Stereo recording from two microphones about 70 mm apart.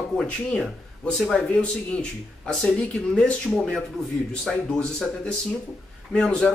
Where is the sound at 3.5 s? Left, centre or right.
Centre.